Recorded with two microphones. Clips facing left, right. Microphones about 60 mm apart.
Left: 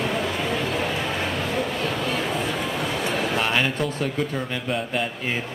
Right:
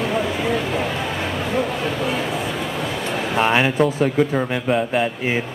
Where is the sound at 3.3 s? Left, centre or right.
Centre.